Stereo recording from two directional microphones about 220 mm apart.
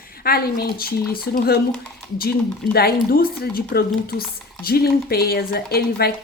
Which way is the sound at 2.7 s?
45° left (ahead or behind).